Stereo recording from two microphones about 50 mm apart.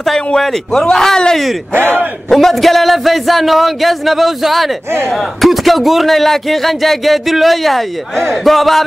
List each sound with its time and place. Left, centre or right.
0.0 s speech: centre
1.7 s speech: right
2.2 s a man's voice: centre